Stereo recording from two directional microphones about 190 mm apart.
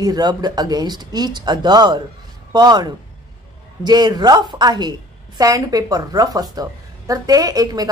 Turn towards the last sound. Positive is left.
turn(degrees=-20)  # may be behind; listen again after turning